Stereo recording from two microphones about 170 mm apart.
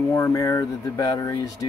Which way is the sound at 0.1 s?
15° left (ahead or behind).